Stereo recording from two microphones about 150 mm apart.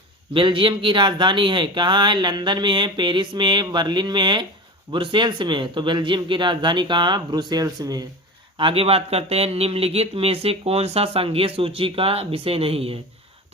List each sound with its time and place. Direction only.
0.3 s a man's voice: 35° right (ahead or behind)
8.5 s a man's voice: 35° right (ahead or behind)